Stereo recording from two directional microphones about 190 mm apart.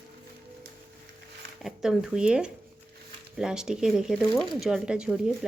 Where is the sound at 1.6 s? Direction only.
5° right (ahead or behind).